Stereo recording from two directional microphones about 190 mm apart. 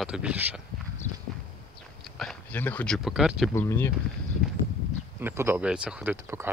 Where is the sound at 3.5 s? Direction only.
15° left (ahead or behind).